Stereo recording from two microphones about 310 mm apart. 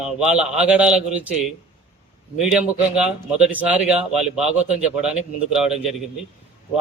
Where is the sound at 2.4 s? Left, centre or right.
Centre.